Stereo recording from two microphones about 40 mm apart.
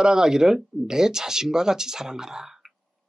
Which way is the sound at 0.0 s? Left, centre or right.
Centre.